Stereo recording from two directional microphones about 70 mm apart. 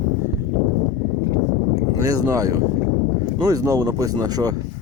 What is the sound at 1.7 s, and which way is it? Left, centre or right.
Speech, right.